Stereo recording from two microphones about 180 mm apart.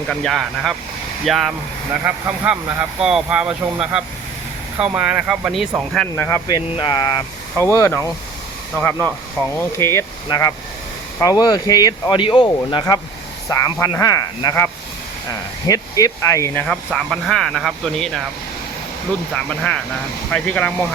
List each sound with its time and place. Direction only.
0.1 s speech: 5° left (ahead or behind)
5.9 s speech: 5° left (ahead or behind)
6.7 s speech: 25° left (ahead or behind)
16.6 s speech: 5° left (ahead or behind)
19.3 s speech: 5° left (ahead or behind)